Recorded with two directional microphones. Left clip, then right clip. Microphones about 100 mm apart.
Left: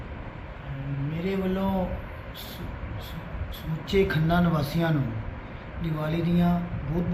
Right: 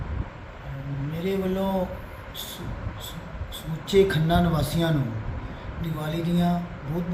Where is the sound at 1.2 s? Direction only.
35° right (ahead or behind).